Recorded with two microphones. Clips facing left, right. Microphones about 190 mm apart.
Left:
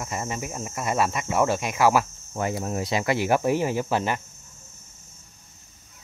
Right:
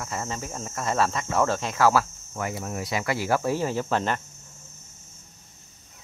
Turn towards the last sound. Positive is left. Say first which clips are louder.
# left 1 dB
turn(degrees=10)  # may be behind; listen again after turning